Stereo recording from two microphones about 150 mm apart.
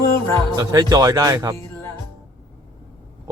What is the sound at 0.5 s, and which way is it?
Speech, 25° right (ahead or behind).